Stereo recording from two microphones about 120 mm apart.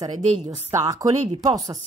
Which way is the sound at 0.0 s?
30° right (ahead or behind).